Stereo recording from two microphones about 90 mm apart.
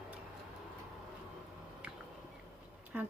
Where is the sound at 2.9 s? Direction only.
20° right (ahead or behind).